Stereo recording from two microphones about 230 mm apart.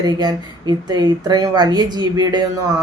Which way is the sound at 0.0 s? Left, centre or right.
Centre.